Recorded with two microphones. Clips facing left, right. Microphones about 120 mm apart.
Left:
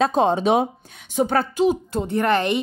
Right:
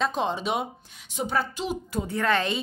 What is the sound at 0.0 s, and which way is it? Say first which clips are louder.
Speech: left 8 dB; 45° left (ahead or behind).